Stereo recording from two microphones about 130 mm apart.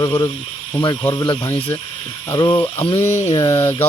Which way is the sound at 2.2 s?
30° left (ahead or behind).